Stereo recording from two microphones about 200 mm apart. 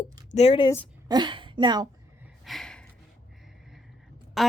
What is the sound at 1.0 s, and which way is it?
Speech, 20° right (ahead or behind).